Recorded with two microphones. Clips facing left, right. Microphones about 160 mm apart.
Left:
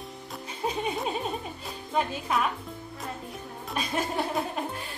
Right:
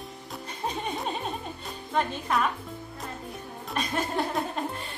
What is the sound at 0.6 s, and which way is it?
Music, centre (ahead or behind).